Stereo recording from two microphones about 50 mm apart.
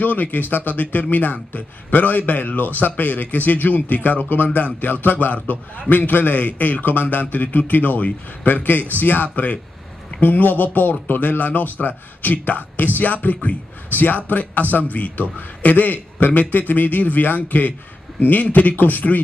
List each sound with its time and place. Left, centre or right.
0.0 s speech: left